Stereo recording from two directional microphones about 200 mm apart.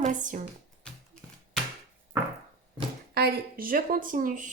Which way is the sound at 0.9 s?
5° left (ahead or behind).